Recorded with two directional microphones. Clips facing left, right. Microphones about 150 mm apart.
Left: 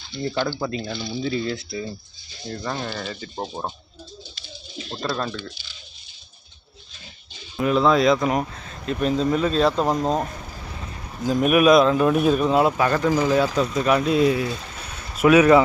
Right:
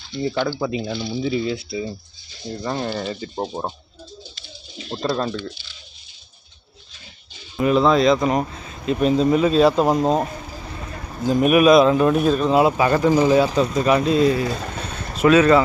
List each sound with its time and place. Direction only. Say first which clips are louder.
0.5 s speech: right 3 dB; 5° right (ahead or behind)
2.5 s speech: right 4 dB; 20° right (ahead or behind)
4.9 s speech: right 4 dB; 25° right (ahead or behind)
7.5 s speech: right 2 dB; centre (ahead or behind)
12.5 s speech: right 3 dB; 5° right (ahead or behind)
13.6 s speech: right 2 dB; centre (ahead or behind)
14.6 s a sound: right 7 dB; 60° right (ahead or behind)
15.2 s speech: even; 10° left (ahead or behind)